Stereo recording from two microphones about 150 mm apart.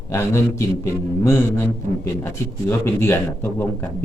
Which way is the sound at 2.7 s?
15° left (ahead or behind).